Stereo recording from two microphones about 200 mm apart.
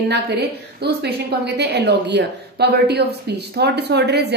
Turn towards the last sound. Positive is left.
turn(degrees=-55)  # may be behind; listen again after turning